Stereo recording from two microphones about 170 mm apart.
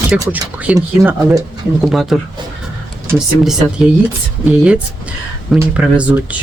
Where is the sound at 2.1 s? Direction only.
Centre (ahead or behind).